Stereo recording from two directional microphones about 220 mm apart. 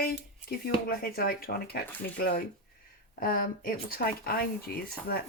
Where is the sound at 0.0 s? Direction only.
45° left (ahead or behind).